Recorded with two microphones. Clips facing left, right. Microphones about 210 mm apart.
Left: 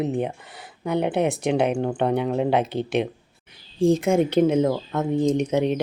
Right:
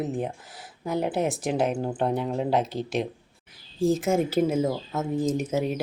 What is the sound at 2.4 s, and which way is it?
Speech, 65° left (ahead or behind).